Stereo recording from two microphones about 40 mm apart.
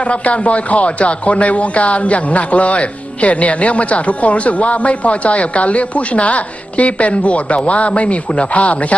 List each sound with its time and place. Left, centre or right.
0.0 s speech: left